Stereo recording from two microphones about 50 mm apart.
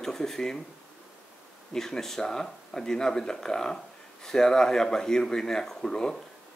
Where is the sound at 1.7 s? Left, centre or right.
Centre.